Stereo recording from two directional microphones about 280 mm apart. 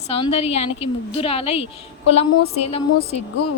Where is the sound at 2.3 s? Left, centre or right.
Left.